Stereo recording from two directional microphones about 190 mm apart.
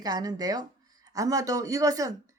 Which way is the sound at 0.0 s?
20° right (ahead or behind).